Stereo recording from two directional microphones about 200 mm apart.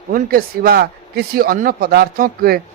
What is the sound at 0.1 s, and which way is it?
Speech, 45° right (ahead or behind).